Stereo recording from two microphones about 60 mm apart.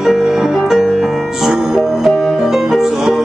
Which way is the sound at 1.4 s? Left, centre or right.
Centre.